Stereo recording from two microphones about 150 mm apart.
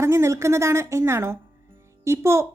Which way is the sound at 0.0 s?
20° right (ahead or behind).